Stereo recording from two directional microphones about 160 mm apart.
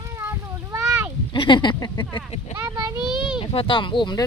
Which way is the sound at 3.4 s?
35° left (ahead or behind).